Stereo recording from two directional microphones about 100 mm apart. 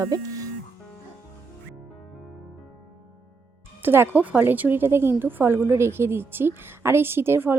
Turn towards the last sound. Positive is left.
turn(degrees=-20)  # may be behind; listen again after turning